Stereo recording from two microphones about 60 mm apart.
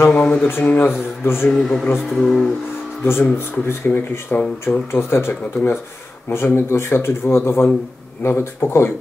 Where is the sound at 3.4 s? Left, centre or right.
Left.